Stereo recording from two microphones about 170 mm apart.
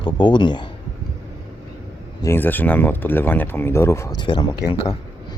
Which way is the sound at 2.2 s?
15° left (ahead or behind).